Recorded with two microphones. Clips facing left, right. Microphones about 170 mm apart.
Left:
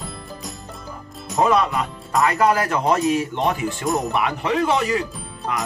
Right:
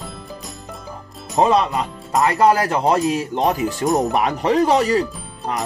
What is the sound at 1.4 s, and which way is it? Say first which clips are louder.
Speech: right 2 dB; 30° right (ahead or behind).